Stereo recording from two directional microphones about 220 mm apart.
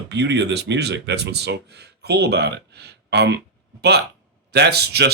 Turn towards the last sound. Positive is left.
turn(degrees=-45)  # may be behind; listen again after turning